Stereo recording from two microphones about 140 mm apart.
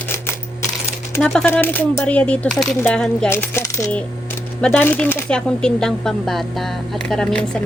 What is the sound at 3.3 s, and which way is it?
Coin, 15° left (ahead or behind).